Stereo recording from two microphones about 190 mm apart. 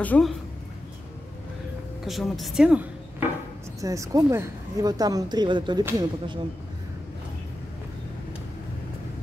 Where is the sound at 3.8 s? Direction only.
15° right (ahead or behind).